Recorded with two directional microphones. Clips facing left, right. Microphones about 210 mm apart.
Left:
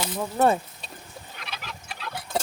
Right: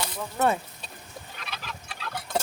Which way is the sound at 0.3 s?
35° left (ahead or behind).